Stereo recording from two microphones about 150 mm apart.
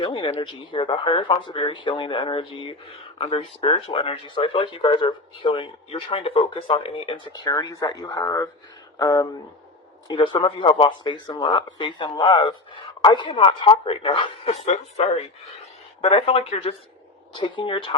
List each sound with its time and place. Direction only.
0.0 s speech: 35° left (ahead or behind)
7.4 s speech: 25° left (ahead or behind)